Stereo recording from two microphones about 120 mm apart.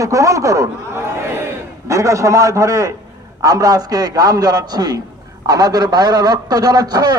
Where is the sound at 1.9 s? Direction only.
25° right (ahead or behind).